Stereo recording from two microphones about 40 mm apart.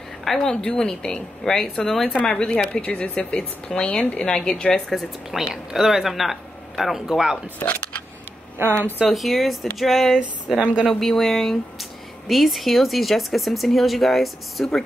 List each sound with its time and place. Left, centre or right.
0.2 s a sound: centre
0.5 s a woman's voice: centre
4.8 s speech: centre
7.6 s speech: left
8.5 s speech: right
9.0 s speech: centre
10.6 s speech: right
10.9 s speech: centre